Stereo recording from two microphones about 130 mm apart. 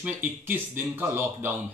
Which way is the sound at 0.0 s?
15° right (ahead or behind).